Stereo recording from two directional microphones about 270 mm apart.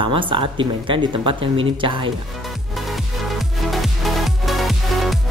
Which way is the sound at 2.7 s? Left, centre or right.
Centre.